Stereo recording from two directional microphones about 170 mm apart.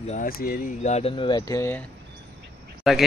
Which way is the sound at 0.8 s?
40° left (ahead or behind).